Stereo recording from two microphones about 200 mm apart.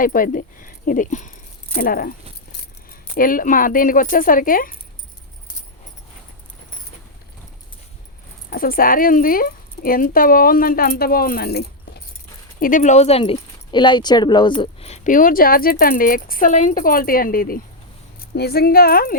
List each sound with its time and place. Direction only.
0.0 s speech: 45° left (ahead or behind)
8.4 s speech: 45° left (ahead or behind)